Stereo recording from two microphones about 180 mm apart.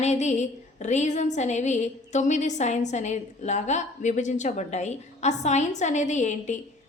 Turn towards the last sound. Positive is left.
turn(degrees=40)  # may be behind; listen again after turning